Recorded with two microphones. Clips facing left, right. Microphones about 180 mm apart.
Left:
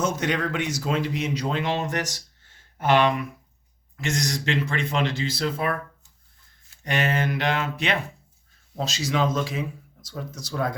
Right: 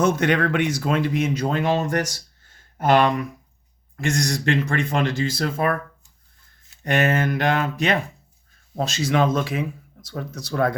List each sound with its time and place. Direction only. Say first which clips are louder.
0.0 s speech: right 6 dB; 60° right (ahead or behind); by 3.1 s 45° right (ahead or behind)
4.2 s speech: right 4 dB; 50° right (ahead or behind)
6.8 s speech: right 4 dB; 50° right (ahead or behind)
8.7 s speech: right 4 dB; 55° right (ahead or behind)